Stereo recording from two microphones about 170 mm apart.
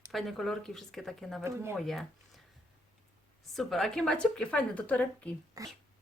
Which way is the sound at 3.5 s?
Centre (ahead or behind).